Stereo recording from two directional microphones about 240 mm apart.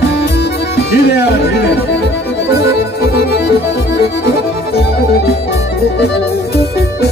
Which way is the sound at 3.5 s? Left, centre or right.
Left.